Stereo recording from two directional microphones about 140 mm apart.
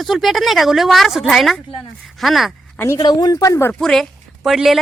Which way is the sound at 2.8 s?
25° left (ahead or behind).